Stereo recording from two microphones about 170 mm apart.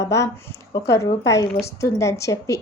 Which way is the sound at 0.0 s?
15° left (ahead or behind).